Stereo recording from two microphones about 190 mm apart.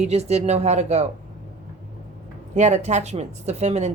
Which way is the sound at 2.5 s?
35° right (ahead or behind).